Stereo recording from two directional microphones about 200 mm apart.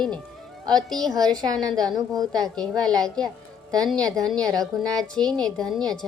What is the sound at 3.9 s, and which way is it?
A woman's voice, centre (ahead or behind).